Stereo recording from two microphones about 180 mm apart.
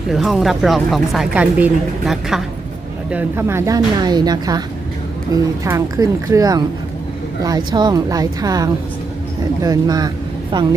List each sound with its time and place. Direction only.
0.1 s speech: centre (ahead or behind); by 10.8 s 25° right (ahead or behind)